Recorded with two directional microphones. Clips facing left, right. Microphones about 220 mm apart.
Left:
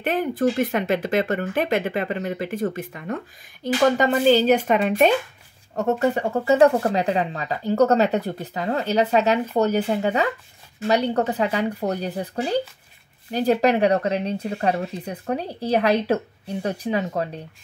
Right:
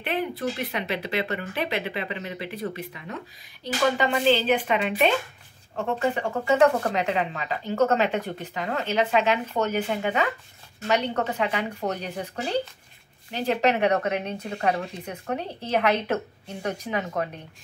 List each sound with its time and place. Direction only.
0.0 s speech: 45° left (ahead or behind)